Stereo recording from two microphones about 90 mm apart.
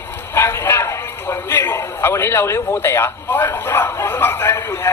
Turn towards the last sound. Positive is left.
turn(degrees=30)  # may be behind; listen again after turning